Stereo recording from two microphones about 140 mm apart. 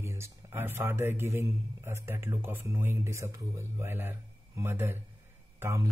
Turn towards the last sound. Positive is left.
turn(degrees=-20)  # may be behind; listen again after turning